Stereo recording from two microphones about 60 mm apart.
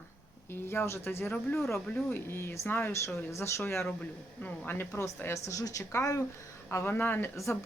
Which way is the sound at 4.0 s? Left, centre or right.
Left.